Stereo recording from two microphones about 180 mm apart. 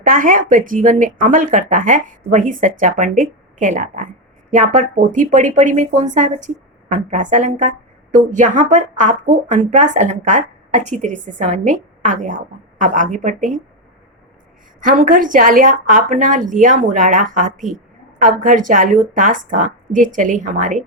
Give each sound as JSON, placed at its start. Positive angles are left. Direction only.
{"t": 0.0, "sound": "speech", "side_deg": -50}
{"t": 14.8, "sound": "speech", "side_deg": -50}